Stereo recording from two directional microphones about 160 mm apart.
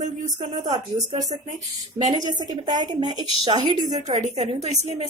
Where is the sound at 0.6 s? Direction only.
25° right (ahead or behind).